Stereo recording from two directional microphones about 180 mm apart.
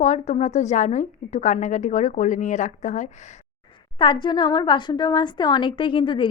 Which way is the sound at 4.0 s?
25° left (ahead or behind).